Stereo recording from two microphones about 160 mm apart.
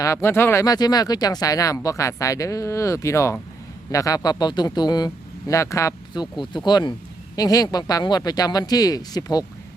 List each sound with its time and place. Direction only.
0.0 s speech: 15° left (ahead or behind)